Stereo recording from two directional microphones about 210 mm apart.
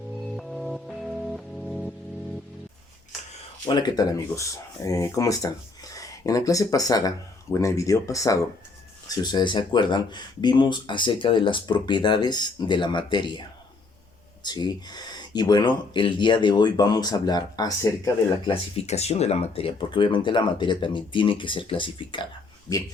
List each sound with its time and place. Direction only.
0.3 s music: centre (ahead or behind)
3.7 s speech: 20° left (ahead or behind)
14.4 s speech: 20° left (ahead or behind)
18.8 s speech: 30° left (ahead or behind)